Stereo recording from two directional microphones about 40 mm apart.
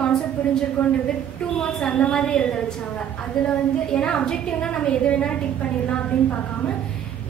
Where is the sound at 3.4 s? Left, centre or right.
Left.